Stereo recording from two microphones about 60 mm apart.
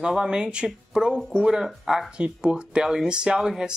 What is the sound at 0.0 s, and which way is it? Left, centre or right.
Speech, centre.